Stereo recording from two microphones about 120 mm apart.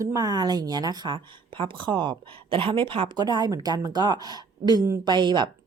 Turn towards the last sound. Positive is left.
turn(degrees=-40)  # may be behind; listen again after turning